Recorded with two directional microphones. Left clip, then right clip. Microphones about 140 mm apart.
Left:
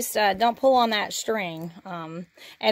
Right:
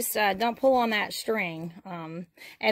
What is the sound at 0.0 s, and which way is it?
A woman's voice, centre (ahead or behind).